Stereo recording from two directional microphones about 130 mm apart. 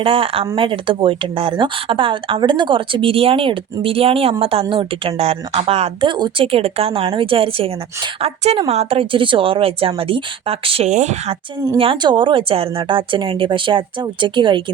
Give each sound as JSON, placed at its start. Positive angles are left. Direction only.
{"t": 0.0, "sound": "speech", "side_deg": -45}
{"t": 10.8, "sound": "speech", "side_deg": -65}
{"t": 11.8, "sound": "speech", "side_deg": -40}